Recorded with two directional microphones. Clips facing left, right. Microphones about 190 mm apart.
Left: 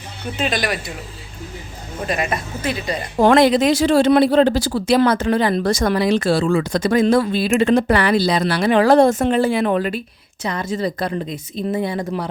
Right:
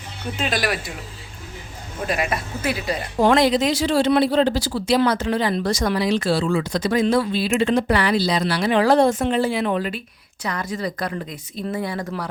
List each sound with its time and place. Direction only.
0.3 s speech: centre (ahead or behind)
2.0 s speech: 5° right (ahead or behind)
3.2 s speech: 55° left (ahead or behind)
10.4 s speech: 25° left (ahead or behind)